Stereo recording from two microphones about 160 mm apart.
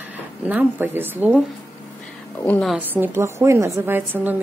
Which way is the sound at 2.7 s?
10° right (ahead or behind).